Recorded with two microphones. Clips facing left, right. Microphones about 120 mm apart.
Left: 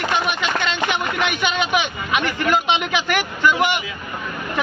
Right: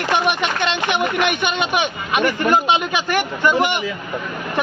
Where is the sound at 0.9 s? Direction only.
60° right (ahead or behind).